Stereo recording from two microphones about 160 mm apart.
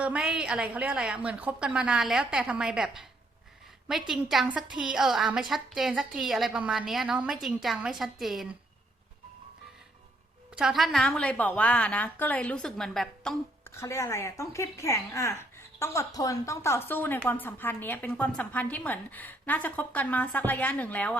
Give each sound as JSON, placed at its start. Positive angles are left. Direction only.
{"t": 0.0, "sound": "a woman's voice", "side_deg": -5}
{"t": 4.1, "sound": "a woman's voice", "side_deg": 0}
{"t": 10.5, "sound": "speech", "side_deg": -5}
{"t": 13.7, "sound": "speech", "side_deg": 20}